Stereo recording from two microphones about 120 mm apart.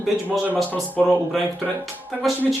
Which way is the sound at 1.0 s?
5° right (ahead or behind).